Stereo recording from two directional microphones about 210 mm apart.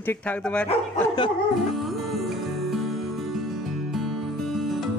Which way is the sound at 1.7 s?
Centre (ahead or behind).